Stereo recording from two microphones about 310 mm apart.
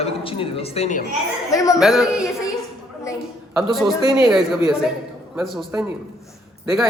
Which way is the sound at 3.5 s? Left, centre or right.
Centre.